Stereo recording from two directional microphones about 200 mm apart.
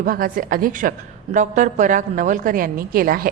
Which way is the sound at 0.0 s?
45° right (ahead or behind).